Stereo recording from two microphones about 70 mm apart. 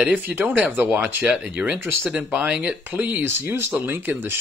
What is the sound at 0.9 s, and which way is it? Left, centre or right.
Speech, centre.